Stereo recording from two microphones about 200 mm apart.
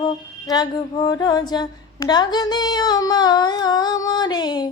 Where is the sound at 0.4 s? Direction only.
20° left (ahead or behind).